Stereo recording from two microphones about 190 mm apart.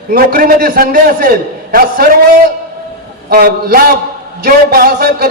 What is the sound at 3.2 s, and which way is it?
A man's voice, 50° right (ahead or behind).